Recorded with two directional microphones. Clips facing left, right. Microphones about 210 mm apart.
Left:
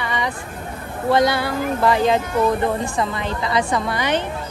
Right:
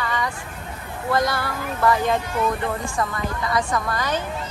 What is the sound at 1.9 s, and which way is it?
Speech, 90° left.